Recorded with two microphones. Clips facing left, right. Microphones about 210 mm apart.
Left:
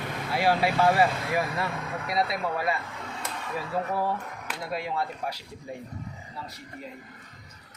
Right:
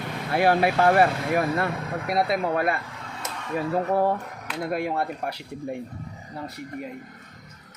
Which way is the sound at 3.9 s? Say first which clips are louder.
Right 6 dB; 55° right (ahead or behind).